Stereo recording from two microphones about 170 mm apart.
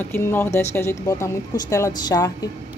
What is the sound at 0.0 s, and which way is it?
A woman's voice, 10° left (ahead or behind).